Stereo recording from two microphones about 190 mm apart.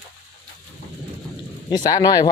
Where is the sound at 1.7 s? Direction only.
20° left (ahead or behind).